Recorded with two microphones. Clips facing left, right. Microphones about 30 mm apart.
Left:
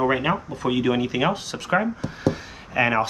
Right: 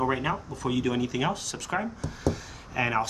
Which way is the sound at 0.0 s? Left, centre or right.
Left.